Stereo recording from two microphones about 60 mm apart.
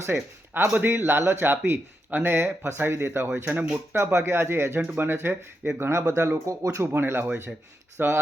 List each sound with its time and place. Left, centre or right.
0.0 s speech: right
3.4 s speech: right
3.9 s speech: right
6.6 s speech: right
6.8 s speech: right